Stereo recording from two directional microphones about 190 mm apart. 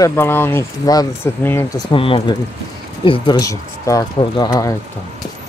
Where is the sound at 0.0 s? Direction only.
10° left (ahead or behind).